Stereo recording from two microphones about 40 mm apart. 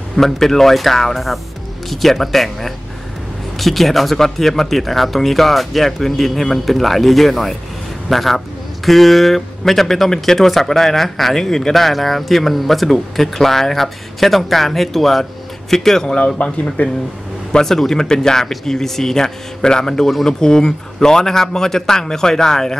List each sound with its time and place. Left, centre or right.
0.1 s a man's voice: centre
16.4 s speech: left
17.5 s a man's voice: centre